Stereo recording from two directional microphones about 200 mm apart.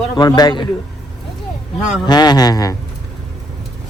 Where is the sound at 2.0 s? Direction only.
20° left (ahead or behind).